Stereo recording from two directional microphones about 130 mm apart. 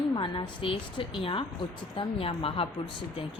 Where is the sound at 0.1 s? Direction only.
40° left (ahead or behind).